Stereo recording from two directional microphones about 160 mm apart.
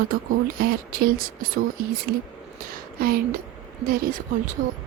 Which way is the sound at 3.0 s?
65° right (ahead or behind).